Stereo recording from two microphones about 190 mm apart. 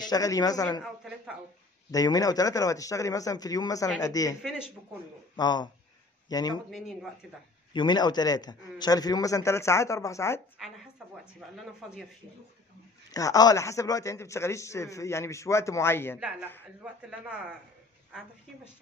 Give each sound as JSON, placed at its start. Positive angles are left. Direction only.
{"t": 0.0, "sound": "a man's voice", "side_deg": 20}
{"t": 1.9, "sound": "a man's voice", "side_deg": 20}
{"t": 4.4, "sound": "speech", "side_deg": 0}
{"t": 5.3, "sound": "speech", "side_deg": 25}
{"t": 7.7, "sound": "a man's voice", "side_deg": 25}
{"t": 13.1, "sound": "a man's voice", "side_deg": 20}
{"t": 16.2, "sound": "speech", "side_deg": -5}